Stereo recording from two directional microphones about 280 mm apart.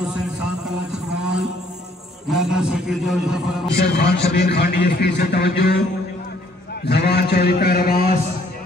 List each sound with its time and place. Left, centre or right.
2.2 s a man's voice: centre
3.7 s a man's voice: left
6.8 s a man's voice: left